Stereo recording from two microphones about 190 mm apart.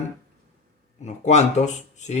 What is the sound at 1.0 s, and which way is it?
Speech, 35° left (ahead or behind).